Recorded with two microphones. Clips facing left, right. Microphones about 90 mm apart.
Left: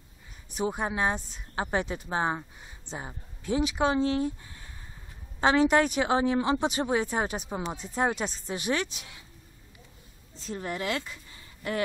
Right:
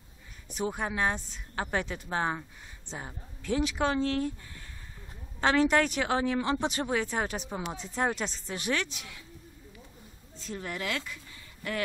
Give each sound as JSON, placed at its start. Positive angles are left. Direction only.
{"t": 0.6, "sound": "speech", "side_deg": 20}
{"t": 10.4, "sound": "speech", "side_deg": 30}